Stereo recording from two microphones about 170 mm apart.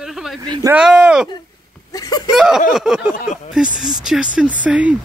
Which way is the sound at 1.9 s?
20° left (ahead or behind).